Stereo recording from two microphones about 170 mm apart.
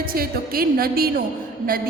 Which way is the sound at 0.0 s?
60° right (ahead or behind).